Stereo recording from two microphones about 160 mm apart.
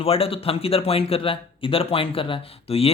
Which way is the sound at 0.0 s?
35° left (ahead or behind).